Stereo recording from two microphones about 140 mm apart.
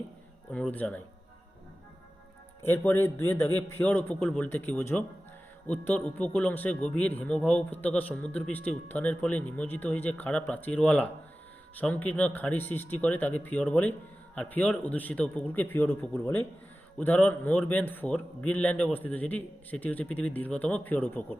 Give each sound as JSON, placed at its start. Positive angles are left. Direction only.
{"t": 0.5, "sound": "a man's voice", "side_deg": 10}
{"t": 2.6, "sound": "a man's voice", "side_deg": 15}